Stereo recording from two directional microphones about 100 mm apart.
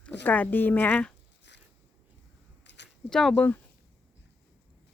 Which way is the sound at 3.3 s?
15° left (ahead or behind).